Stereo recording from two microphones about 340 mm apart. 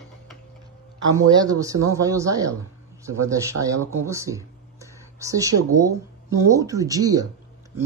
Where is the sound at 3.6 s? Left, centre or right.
Right.